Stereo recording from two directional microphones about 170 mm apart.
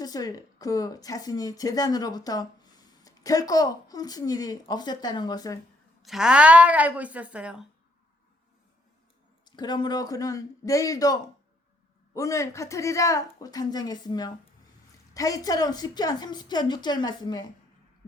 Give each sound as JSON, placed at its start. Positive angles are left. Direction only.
{"t": 0.0, "sound": "a woman's voice", "side_deg": 20}
{"t": 6.0, "sound": "a woman's voice", "side_deg": 0}
{"t": 9.4, "sound": "a woman's voice", "side_deg": 25}